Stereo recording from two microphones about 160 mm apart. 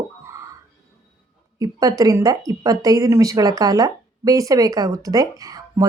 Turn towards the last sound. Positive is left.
turn(degrees=-20)  # may be behind; listen again after turning